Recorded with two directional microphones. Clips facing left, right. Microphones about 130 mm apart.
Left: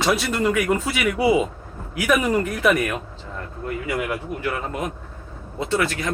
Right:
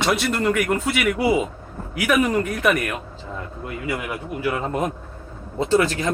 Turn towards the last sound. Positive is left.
turn(degrees=-30)  # may be behind; listen again after turning